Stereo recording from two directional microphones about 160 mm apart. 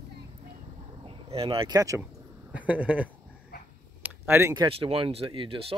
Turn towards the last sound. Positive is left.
turn(degrees=-35)  # may be behind; listen again after turning